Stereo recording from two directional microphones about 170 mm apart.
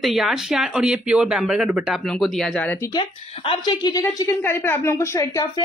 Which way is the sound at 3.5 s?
25° left (ahead or behind).